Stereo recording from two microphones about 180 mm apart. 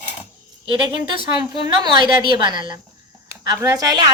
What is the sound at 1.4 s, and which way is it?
A woman's voice, 25° right (ahead or behind).